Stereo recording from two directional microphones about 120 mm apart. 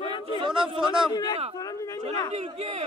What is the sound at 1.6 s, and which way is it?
Speech, 30° left (ahead or behind).